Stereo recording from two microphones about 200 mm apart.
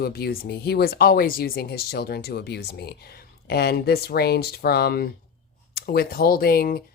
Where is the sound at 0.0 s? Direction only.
50° left (ahead or behind).